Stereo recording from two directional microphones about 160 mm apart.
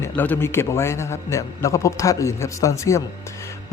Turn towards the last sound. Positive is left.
turn(degrees=20)  # may be behind; listen again after turning